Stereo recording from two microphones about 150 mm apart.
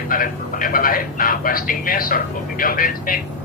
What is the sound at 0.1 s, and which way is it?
Speech, 70° left (ahead or behind).